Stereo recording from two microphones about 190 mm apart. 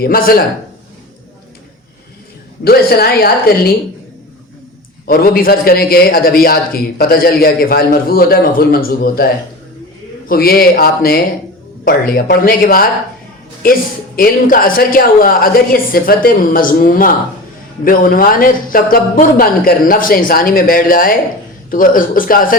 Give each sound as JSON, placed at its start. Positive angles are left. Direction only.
{"t": 0.0, "sound": "a man's voice", "side_deg": 50}
{"t": 2.6, "sound": "a man's voice", "side_deg": 55}
{"t": 5.0, "sound": "a man's voice", "side_deg": 50}
{"t": 10.2, "sound": "a man's voice", "side_deg": 50}
{"t": 14.2, "sound": "a man's voice", "side_deg": 50}